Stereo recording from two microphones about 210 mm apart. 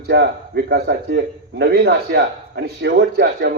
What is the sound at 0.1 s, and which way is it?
A man's voice, 50° right (ahead or behind).